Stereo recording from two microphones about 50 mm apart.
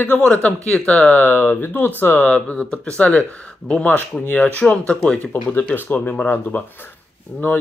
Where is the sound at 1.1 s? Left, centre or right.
Left.